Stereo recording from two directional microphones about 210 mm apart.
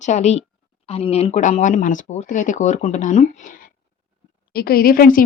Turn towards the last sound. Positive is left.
turn(degrees=40)  # may be behind; listen again after turning